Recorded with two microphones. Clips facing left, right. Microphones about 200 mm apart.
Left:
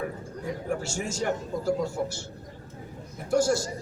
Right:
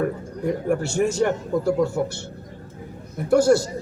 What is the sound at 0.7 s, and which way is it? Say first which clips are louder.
A man's voice: right 10 dB; 60° right (ahead or behind).